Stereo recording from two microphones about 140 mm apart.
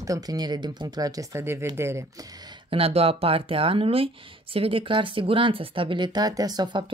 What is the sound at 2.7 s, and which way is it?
Speech, 45° right (ahead or behind).